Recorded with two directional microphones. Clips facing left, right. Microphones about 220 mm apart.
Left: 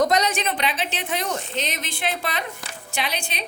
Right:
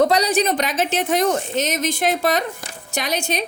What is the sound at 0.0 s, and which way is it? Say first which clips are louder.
A woman's voice: right 4 dB; 35° right (ahead or behind).